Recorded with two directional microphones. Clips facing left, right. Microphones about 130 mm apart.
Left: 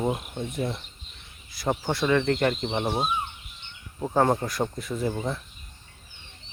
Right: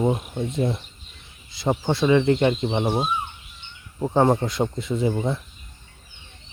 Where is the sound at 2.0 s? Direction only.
15° right (ahead or behind).